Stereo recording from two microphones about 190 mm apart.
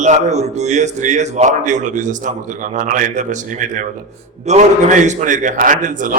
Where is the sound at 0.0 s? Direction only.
40° right (ahead or behind).